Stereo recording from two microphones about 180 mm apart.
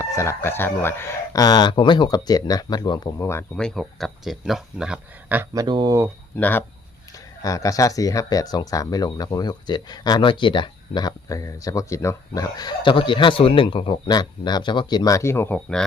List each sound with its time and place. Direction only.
0.0 s speech: 15° left (ahead or behind)
3.6 s speech: centre (ahead or behind)
5.6 s speech: 25° right (ahead or behind)
6.3 s speech: 10° left (ahead or behind)